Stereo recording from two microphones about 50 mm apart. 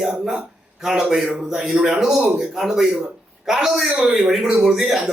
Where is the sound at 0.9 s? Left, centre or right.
Centre.